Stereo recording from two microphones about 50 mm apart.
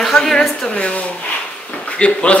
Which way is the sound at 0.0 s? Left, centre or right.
Centre.